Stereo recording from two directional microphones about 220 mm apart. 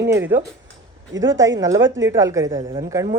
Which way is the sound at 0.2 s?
10° right (ahead or behind).